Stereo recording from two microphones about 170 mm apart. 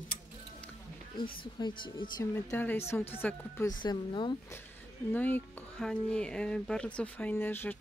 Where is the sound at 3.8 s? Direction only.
25° left (ahead or behind).